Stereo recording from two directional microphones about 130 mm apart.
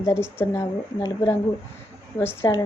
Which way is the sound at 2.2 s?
15° left (ahead or behind).